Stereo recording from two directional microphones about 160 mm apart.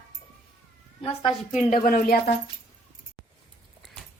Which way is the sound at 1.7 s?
65° left (ahead or behind).